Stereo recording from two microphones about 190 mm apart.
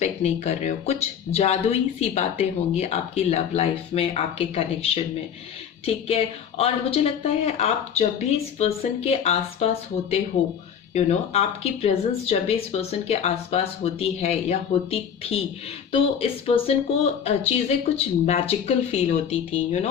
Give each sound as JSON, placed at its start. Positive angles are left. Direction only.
{"t": 0.0, "sound": "speech", "side_deg": 35}